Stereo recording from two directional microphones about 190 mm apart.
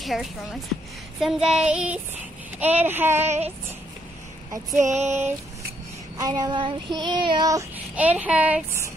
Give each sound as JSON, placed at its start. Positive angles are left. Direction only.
{"t": 0.0, "sound": "a woman's voice", "side_deg": 0}
{"t": 1.2, "sound": "child singing", "side_deg": 0}
{"t": 2.6, "sound": "speech", "side_deg": -10}
{"t": 4.8, "sound": "female singing", "side_deg": -35}
{"t": 6.1, "sound": "child singing", "side_deg": -20}
{"t": 7.9, "sound": "speech", "side_deg": -10}